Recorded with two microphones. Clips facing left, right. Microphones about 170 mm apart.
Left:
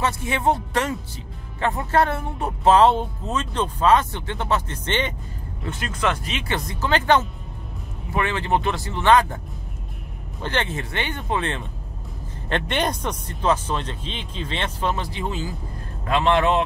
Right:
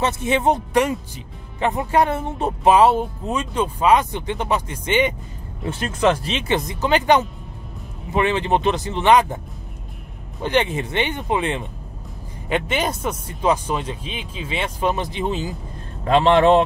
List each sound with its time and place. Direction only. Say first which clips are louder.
0.0 s speech: right 3 dB; 20° right (ahead or behind)
2.7 s speech: right 1 dB; 10° right (ahead or behind)
5.7 s speech: right 6 dB; 25° right (ahead or behind)
10.4 s speech: right 6 dB; 15° right (ahead or behind)
16.1 s speech: right 5 dB; 30° right (ahead or behind)